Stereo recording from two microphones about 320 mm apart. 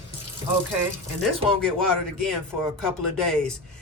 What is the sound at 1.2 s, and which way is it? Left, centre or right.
Speech, centre.